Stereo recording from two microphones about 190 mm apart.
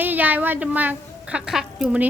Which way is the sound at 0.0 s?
10° right (ahead or behind).